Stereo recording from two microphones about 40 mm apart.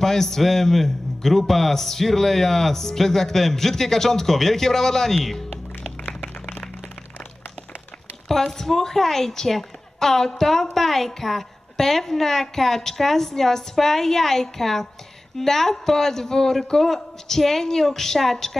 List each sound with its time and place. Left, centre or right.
0.0 s a woman's voice: centre
6.0 s a sound: left
8.3 s a woman's voice: centre